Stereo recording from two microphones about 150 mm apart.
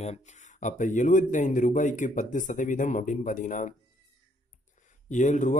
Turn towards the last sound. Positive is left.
turn(degrees=55)  # may be behind; listen again after turning